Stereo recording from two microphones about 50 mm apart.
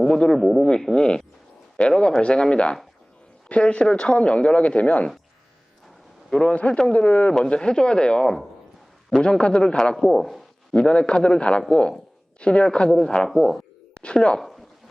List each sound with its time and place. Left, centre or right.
0.1 s speech: left
0.3 s speech: centre
0.9 s a man's voice: centre
6.4 s a man's voice: left
9.9 s speech: centre
10.8 s a man's voice: left; by 13.6 s centre
14.0 s speech: centre
14.3 s speech: centre